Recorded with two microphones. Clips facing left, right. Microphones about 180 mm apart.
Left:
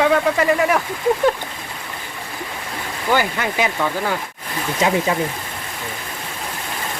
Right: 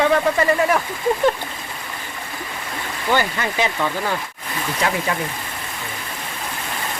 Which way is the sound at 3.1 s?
10° left (ahead or behind).